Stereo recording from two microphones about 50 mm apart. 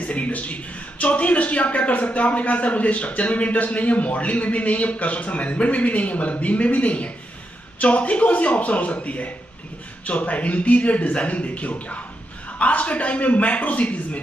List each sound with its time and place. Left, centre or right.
0.0 s a man's voice: left